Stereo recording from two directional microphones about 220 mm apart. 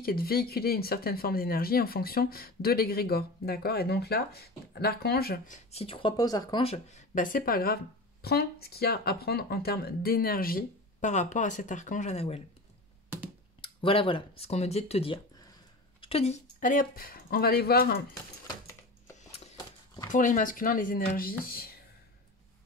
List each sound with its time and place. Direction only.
0.0 s speech: 45° left (ahead or behind)
5.7 s speech: 25° left (ahead or behind)
13.6 s speech: 25° left (ahead or behind); by 17.9 s 45° left (ahead or behind)
20.1 s speech: 35° left (ahead or behind)